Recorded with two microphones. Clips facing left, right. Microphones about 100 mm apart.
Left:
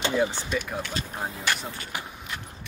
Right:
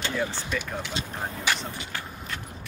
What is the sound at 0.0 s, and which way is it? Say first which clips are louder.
Speech: left 4 dB; 20° left (ahead or behind).